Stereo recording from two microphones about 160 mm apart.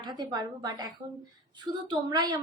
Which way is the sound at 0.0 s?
25° right (ahead or behind).